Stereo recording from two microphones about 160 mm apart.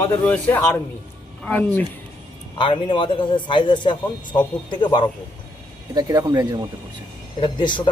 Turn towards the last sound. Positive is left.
turn(degrees=30)  # may be behind; listen again after turning